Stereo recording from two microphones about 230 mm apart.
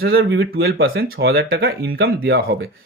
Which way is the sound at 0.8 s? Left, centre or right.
Right.